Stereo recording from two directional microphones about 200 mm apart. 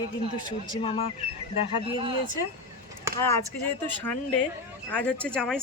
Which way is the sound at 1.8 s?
25° right (ahead or behind).